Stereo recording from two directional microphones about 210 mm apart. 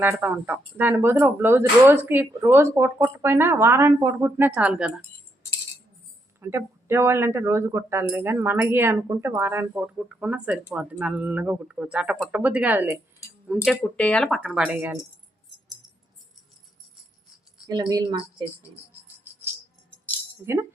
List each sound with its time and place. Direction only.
0.0 s speech: 10° right (ahead or behind)
6.4 s speech: 10° right (ahead or behind)
13.7 s speech: 5° left (ahead or behind)
17.7 s speech: 20° right (ahead or behind)
20.4 s speech: 15° right (ahead or behind)